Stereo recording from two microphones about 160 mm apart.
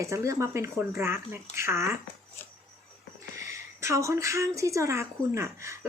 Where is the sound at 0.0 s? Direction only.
20° right (ahead or behind).